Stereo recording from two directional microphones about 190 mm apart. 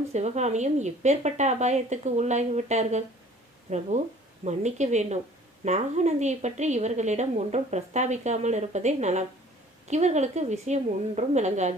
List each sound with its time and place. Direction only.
0.1 s a woman's voice: 35° right (ahead or behind)